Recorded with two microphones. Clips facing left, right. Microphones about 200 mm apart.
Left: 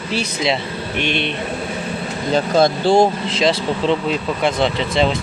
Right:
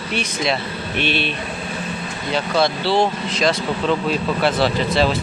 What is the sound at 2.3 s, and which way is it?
Speech, 45° left (ahead or behind).